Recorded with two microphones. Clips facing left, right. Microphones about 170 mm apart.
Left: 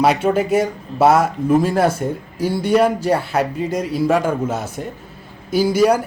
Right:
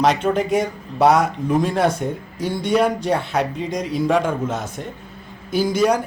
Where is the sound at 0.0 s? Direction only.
5° left (ahead or behind).